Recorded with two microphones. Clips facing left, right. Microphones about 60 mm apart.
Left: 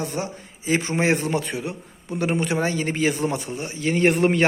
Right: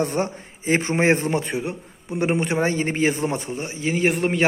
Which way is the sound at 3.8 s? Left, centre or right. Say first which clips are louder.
Left 3 dB; centre.